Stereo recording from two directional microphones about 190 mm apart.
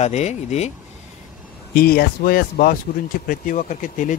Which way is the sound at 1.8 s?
50° left (ahead or behind).